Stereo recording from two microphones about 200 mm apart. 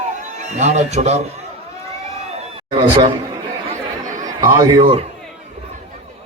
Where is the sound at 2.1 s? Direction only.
30° right (ahead or behind).